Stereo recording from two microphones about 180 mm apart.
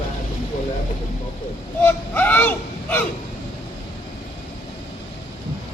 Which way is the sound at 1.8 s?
10° left (ahead or behind).